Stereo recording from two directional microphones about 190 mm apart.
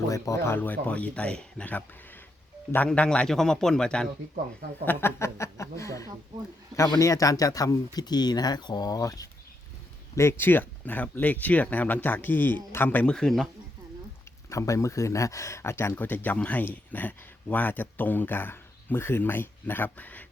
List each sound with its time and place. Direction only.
0.1 s a man's voice: 15° left (ahead or behind)
14.5 s speech: 15° left (ahead or behind)